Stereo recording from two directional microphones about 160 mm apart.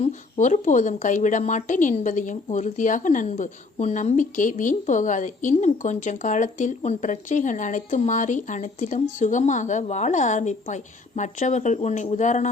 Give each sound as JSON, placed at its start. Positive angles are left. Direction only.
{"t": 0.0, "sound": "a woman's voice", "side_deg": 50}